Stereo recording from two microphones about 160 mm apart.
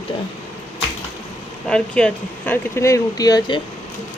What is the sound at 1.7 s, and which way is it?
Speech, 5° left (ahead or behind).